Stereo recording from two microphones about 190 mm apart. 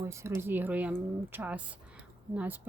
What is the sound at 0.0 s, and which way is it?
Speech, 15° right (ahead or behind).